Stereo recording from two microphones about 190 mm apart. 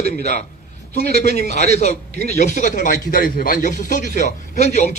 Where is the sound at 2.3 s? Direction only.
40° left (ahead or behind).